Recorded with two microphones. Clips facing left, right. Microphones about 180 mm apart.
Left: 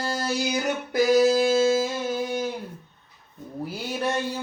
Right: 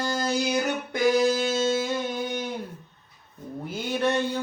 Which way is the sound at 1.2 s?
35° left (ahead or behind).